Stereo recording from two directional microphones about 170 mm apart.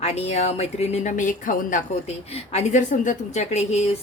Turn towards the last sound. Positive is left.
turn(degrees=40)  # may be behind; listen again after turning